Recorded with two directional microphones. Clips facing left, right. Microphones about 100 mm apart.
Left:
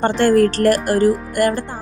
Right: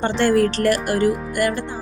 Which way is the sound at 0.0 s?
45° left (ahead or behind).